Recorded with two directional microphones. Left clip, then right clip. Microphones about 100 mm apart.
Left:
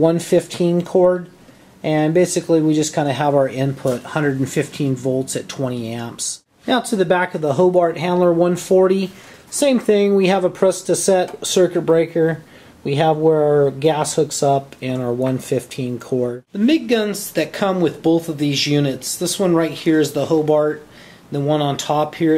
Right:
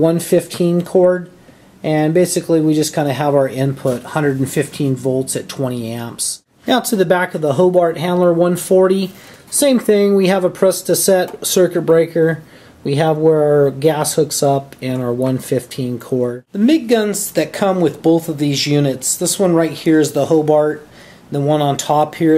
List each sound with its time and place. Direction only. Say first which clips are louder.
0.0 s speech: right 1 dB; 10° left (ahead or behind)
16.5 s speech: right 3 dB; 30° right (ahead or behind)